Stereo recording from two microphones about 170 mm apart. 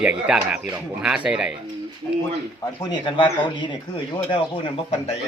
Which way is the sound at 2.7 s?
25° left (ahead or behind).